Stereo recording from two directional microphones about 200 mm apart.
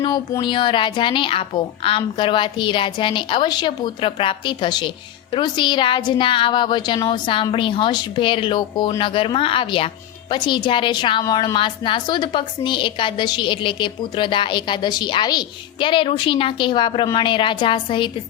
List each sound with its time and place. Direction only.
0.0 s a woman's voice: 20° left (ahead or behind)